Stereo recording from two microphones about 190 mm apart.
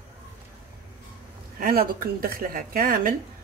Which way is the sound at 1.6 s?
50° right (ahead or behind).